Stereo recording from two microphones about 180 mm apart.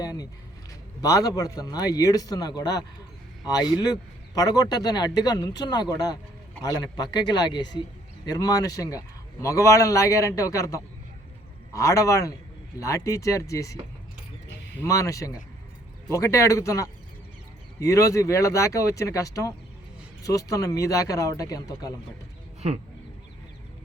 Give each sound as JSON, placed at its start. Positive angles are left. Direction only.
{"t": 0.0, "sound": "a sound", "side_deg": 20}
{"t": 1.0, "sound": "a man's voice", "side_deg": 20}
{"t": 14.8, "sound": "a man's voice", "side_deg": 15}